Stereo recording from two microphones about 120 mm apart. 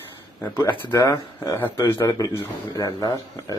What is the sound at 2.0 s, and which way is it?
Speech, 30° left (ahead or behind).